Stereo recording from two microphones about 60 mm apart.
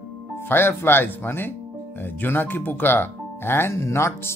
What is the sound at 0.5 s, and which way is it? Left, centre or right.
Speech, left.